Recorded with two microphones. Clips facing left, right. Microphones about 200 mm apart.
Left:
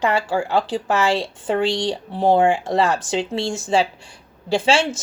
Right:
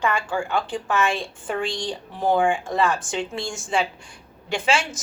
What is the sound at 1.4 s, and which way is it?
A woman's voice, 25° left (ahead or behind).